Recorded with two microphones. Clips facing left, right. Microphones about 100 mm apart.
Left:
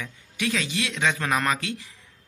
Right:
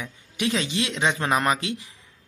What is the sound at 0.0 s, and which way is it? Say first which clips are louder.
Speech: right 2 dB; 20° right (ahead or behind).